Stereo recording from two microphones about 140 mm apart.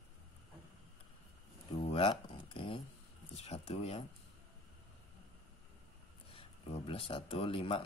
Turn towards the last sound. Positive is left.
turn(degrees=40)  # may be behind; listen again after turning